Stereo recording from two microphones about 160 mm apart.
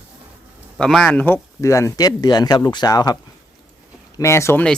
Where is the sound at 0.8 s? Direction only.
5° left (ahead or behind).